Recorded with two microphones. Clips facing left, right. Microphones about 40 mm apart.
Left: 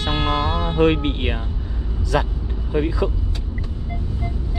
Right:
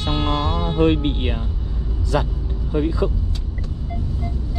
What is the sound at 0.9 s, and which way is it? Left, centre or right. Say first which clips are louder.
Speech: right 1 dB; left.